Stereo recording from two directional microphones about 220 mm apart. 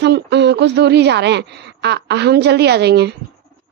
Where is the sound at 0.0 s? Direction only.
50° right (ahead or behind).